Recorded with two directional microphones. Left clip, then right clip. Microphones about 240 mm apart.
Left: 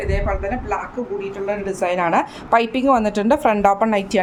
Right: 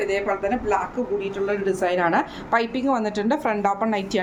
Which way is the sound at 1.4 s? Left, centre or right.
Left.